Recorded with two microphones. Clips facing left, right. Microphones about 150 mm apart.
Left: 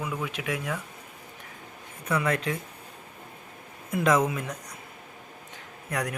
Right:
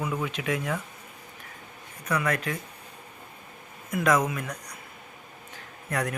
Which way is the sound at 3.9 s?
25° left (ahead or behind).